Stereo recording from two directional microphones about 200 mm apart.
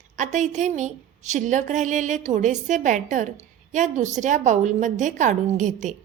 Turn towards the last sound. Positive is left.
turn(degrees=-40)  # may be behind; listen again after turning